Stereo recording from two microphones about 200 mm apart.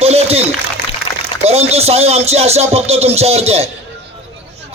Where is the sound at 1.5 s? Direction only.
30° right (ahead or behind).